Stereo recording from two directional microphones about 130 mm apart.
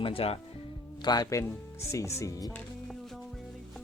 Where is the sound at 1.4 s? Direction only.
20° left (ahead or behind).